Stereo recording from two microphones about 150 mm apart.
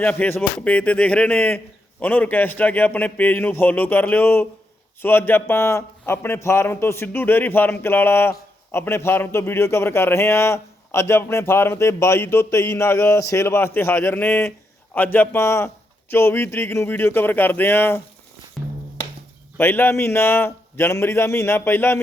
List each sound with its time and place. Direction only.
0.0 s a man's voice: 10° left (ahead or behind)
19.5 s a man's voice: 15° left (ahead or behind)